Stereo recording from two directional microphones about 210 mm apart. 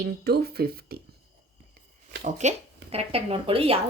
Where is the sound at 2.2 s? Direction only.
35° right (ahead or behind).